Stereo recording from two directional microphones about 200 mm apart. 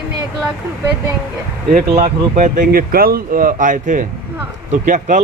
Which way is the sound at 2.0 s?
40° right (ahead or behind).